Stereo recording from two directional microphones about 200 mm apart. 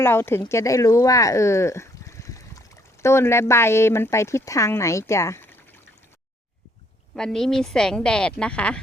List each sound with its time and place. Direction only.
0.0 s speech: 10° left (ahead or behind)
7.2 s speech: centre (ahead or behind)